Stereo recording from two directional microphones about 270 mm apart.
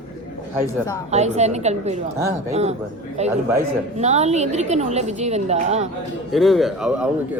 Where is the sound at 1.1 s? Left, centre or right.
Right.